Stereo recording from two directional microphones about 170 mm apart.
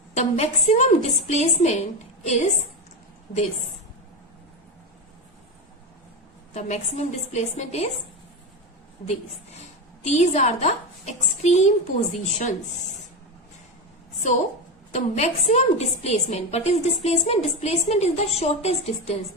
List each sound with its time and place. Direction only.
0.2 s a woman's voice: 40° left (ahead or behind)
6.5 s a woman's voice: 40° left (ahead or behind)
9.0 s a woman's voice: 40° left (ahead or behind)
14.9 s a woman's voice: 40° left (ahead or behind)